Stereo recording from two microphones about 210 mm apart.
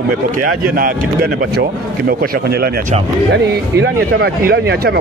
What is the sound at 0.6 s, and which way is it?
Speech, 45° right (ahead or behind).